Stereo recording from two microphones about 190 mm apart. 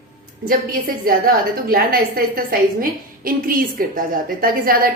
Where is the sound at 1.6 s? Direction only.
50° right (ahead or behind).